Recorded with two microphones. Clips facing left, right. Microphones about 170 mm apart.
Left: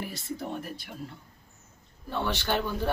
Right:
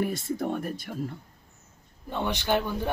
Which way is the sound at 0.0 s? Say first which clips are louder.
Right 7 dB; 50° right (ahead or behind).